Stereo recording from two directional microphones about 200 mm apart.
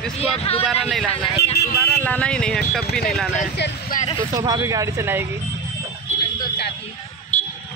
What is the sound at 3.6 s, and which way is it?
Speech, 60° left (ahead or behind).